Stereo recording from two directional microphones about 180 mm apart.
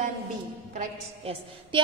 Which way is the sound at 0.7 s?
30° right (ahead or behind).